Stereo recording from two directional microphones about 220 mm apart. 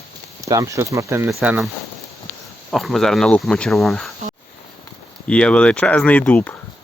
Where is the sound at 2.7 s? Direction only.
Centre (ahead or behind).